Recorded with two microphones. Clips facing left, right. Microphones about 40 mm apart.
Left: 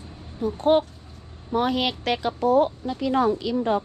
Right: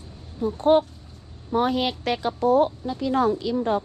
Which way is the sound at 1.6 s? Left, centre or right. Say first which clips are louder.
Right 1 dB; left.